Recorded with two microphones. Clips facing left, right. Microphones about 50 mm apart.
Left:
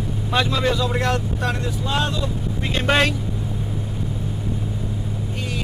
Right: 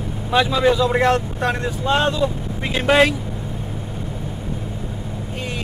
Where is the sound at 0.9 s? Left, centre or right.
Right.